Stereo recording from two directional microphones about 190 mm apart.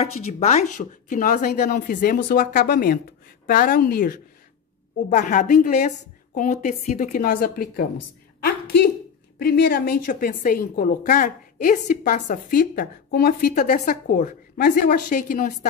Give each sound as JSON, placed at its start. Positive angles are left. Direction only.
{"t": 0.0, "sound": "a woman's voice", "side_deg": 35}
{"t": 5.1, "sound": "a woman's voice", "side_deg": 40}
{"t": 8.4, "sound": "a sound", "side_deg": 60}
{"t": 9.4, "sound": "a woman's voice", "side_deg": 55}